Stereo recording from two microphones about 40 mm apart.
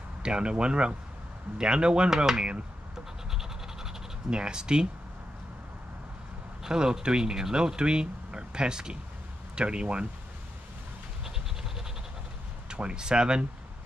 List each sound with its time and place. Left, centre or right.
0.2 s speech: right
4.3 s speech: right
6.6 s speech: centre
12.6 s speech: right